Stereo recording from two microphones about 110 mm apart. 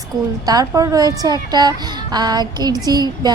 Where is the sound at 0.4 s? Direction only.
35° right (ahead or behind).